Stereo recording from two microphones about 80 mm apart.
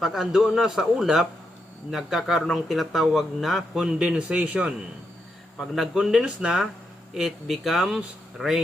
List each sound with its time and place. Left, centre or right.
0.0 s speech: centre
3.9 s a man's voice: centre
5.5 s a man's voice: centre